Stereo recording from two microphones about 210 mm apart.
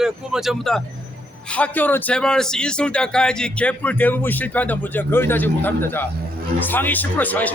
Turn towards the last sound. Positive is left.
turn(degrees=10)  # may be behind; listen again after turning